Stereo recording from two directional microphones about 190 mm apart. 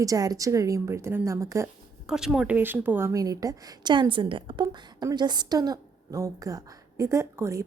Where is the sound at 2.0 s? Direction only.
Centre (ahead or behind).